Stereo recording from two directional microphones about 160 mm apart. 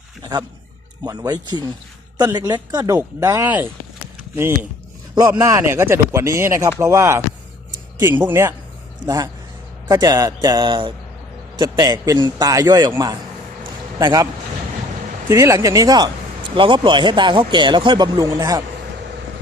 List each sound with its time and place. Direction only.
0.2 s speech: 25° right (ahead or behind)
5.1 s speech: 25° right (ahead or behind)
8.2 s speech: 15° right (ahead or behind)
15.3 s speech: 20° right (ahead or behind)